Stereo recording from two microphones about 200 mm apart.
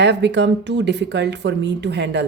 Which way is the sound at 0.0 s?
60° right (ahead or behind).